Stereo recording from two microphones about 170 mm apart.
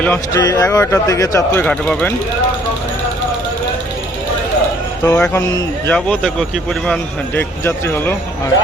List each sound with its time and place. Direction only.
0.3 s speech: 20° left (ahead or behind)
1.5 s speech: 5° left (ahead or behind)
5.0 s speech: 10° left (ahead or behind)